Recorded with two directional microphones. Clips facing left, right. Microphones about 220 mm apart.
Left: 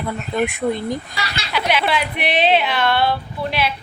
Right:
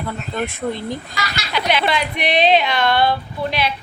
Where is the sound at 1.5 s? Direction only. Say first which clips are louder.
Even; 5° left (ahead or behind).